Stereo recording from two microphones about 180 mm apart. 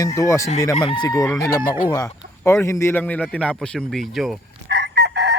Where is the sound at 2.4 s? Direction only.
15° left (ahead or behind).